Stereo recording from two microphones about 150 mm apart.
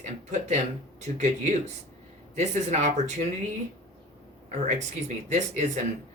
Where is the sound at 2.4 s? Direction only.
50° right (ahead or behind).